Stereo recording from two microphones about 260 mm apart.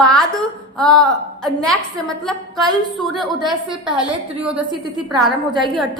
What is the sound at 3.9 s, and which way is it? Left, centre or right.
Speech, centre.